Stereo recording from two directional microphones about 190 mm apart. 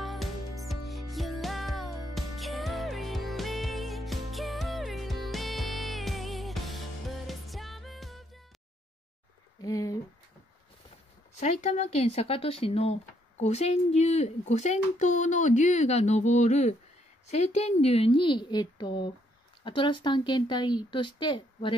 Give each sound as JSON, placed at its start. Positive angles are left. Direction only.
{"t": 0.0, "sound": "music", "side_deg": 0}
{"t": 9.6, "sound": "a sound", "side_deg": 20}
{"t": 11.3, "sound": "a child's voice", "side_deg": 35}